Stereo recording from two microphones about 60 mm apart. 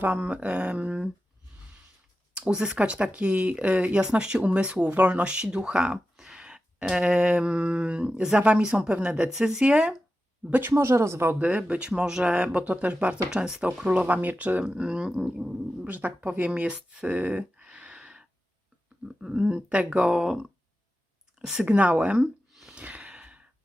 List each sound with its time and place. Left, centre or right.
0.0 s speech: right
2.3 s speech: centre
10.6 s speech: right
11.3 s speech: right
14.6 s speech: centre
15.9 s speech: right
16.5 s a sound: centre
19.0 s speech: centre
21.3 s a sound: centre
21.6 s speech: right
22.7 s gasp: right